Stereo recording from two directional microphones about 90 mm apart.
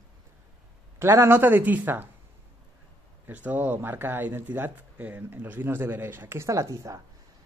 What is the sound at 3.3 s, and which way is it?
Speech, 20° right (ahead or behind).